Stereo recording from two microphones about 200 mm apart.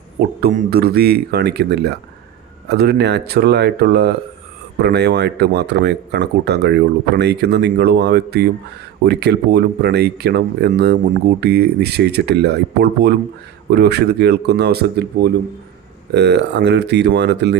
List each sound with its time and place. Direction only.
0.2 s speech: 50° right (ahead or behind)